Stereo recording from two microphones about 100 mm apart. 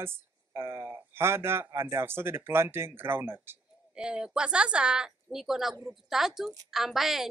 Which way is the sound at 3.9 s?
10° right (ahead or behind).